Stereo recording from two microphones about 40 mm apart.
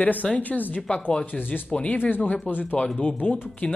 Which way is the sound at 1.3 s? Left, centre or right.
Left.